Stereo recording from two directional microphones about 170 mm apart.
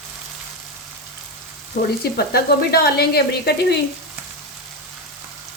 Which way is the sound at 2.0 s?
65° left (ahead or behind).